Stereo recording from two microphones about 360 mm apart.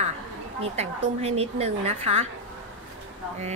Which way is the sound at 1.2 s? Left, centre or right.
Centre.